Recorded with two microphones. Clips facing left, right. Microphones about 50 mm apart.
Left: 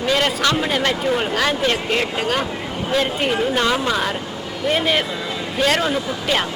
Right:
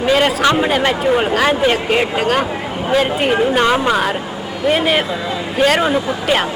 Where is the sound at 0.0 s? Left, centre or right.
Centre.